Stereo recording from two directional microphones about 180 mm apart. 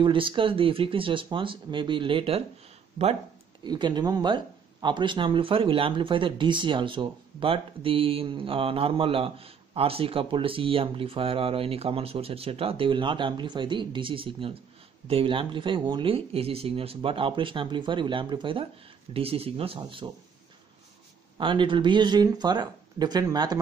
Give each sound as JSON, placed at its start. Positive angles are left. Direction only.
{"t": 0.0, "sound": "speech", "side_deg": -25}
{"t": 3.6, "sound": "speech", "side_deg": -25}
{"t": 21.4, "sound": "speech", "side_deg": -30}